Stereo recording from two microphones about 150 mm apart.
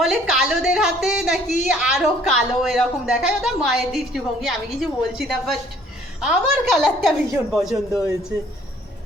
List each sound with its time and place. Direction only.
0.0 s a woman's voice: centre (ahead or behind)